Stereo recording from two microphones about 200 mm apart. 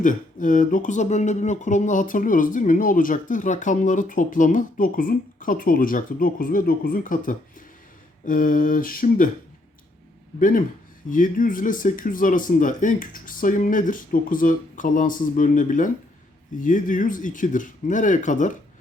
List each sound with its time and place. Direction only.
0.0 s speech: 40° left (ahead or behind)
11.1 s speech: 40° left (ahead or behind)